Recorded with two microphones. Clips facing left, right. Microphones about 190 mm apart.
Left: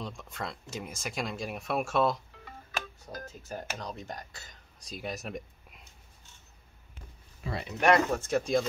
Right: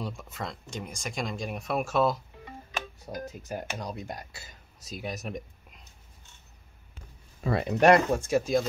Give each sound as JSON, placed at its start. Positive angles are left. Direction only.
{"t": 0.0, "sound": "speech", "side_deg": -5}
{"t": 3.1, "sound": "speech", "side_deg": -15}
{"t": 7.4, "sound": "speech", "side_deg": -60}
{"t": 8.1, "sound": "speech", "side_deg": -10}